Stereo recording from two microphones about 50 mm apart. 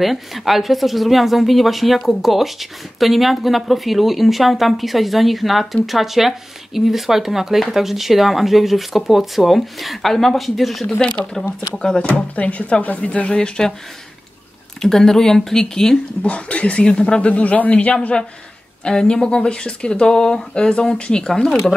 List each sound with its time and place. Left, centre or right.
0.0 s speech: centre
11.0 s speech: centre
12.0 s speech: left
14.8 s speech: centre
16.2 s speech: left
18.9 s speech: centre